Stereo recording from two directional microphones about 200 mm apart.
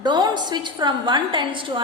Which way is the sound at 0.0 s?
20° right (ahead or behind).